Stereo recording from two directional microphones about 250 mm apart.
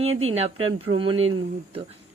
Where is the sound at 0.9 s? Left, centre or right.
Right.